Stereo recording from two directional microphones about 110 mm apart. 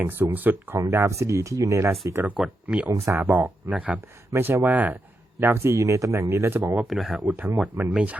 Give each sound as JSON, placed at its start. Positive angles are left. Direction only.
{"t": 0.0, "sound": "speech", "side_deg": -20}
{"t": 2.3, "sound": "speech", "side_deg": -5}
{"t": 2.9, "sound": "speech", "side_deg": -25}
{"t": 3.2, "sound": "speech", "side_deg": -15}
{"t": 4.3, "sound": "speech", "side_deg": -25}
{"t": 6.7, "sound": "speech", "side_deg": 0}
{"t": 7.3, "sound": "speech", "side_deg": -15}